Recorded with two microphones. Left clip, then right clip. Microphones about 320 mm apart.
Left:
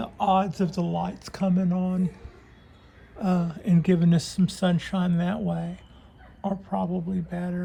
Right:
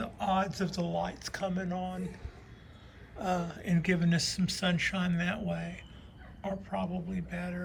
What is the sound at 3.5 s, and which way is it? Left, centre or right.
Speech, centre.